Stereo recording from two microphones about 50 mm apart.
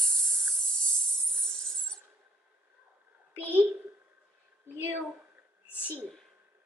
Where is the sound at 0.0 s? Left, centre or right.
Centre.